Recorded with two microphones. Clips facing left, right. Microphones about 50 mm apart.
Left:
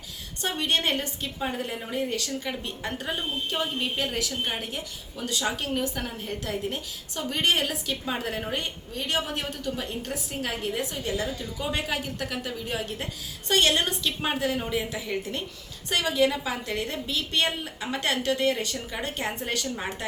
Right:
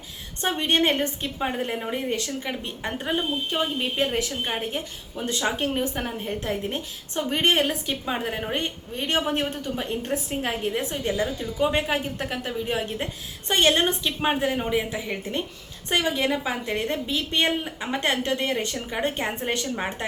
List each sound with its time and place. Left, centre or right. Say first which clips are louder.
0.4 s a woman's voice: right 4 dB; right
8.0 s a woman's voice: right 3 dB; centre
8.5 s a woman's voice: right 3 dB; right